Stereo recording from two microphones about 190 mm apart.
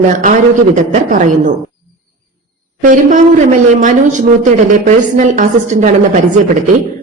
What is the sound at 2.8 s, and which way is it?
A woman's voice, 40° right (ahead or behind).